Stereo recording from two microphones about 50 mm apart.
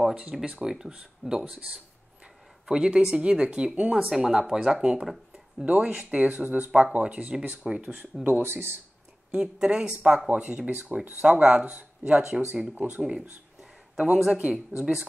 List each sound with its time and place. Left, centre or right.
0.1 s speech: centre
2.7 s speech: centre
4.0 s speech: centre
5.0 s a sound: centre
5.7 s speech: right
6.2 s speech: right
6.8 s speech: right
8.4 s speech: right
9.4 s speech: centre
10.2 s speech: right
10.9 s speech: centre
11.2 s speech: right
12.1 s speech: centre
13.9 s speech: centre